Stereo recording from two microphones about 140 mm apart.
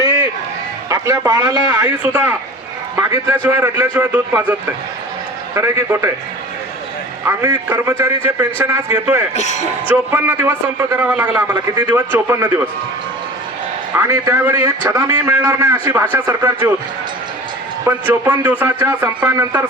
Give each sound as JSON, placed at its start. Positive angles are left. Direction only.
{"t": 0.9, "sound": "a man's voice", "side_deg": -25}
{"t": 1.7, "sound": "a man's voice", "side_deg": -15}
{"t": 5.5, "sound": "a man's voice", "side_deg": -20}
{"t": 7.3, "sound": "a man's voice", "side_deg": -20}
{"t": 9.3, "sound": "speech", "side_deg": 55}
{"t": 9.9, "sound": "a man's voice", "side_deg": -15}
{"t": 13.9, "sound": "a man's voice", "side_deg": -20}
{"t": 16.2, "sound": "a man's voice", "side_deg": -25}
{"t": 17.8, "sound": "a man's voice", "side_deg": -15}